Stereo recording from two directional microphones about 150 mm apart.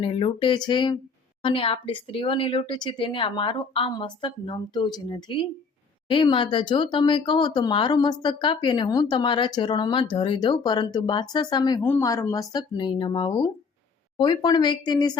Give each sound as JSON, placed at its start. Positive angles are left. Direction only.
{"t": 0.0, "sound": "speech", "side_deg": 40}
{"t": 11.8, "sound": "speech", "side_deg": 15}